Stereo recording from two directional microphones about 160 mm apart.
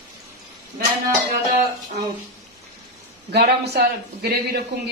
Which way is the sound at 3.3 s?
90° right.